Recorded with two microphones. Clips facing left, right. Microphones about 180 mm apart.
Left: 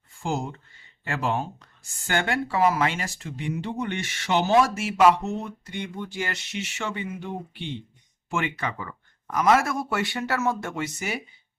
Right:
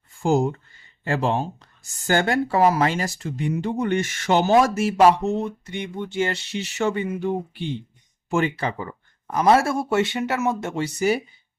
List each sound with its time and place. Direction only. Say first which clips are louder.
0.2 s speech: right 9 dB; 45° right (ahead or behind)
1.0 s speech: right 4 dB; 30° right (ahead or behind)
10.8 s speech: right 10 dB; 35° right (ahead or behind)